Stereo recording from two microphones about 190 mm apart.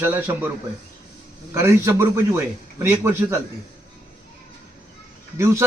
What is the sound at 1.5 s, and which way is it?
Speech, 15° right (ahead or behind).